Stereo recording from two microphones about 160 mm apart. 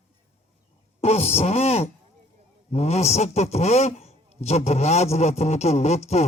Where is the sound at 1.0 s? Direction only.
40° left (ahead or behind).